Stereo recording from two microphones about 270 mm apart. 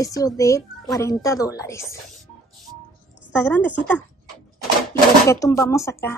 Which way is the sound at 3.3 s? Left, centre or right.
Centre.